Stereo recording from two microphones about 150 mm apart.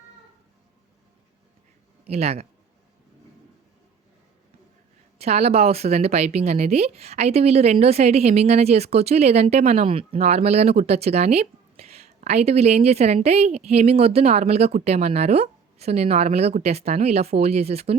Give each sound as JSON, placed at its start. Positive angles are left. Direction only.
{"t": 2.0, "sound": "a woman's voice", "side_deg": -45}
{"t": 5.1, "sound": "a woman's voice", "side_deg": -45}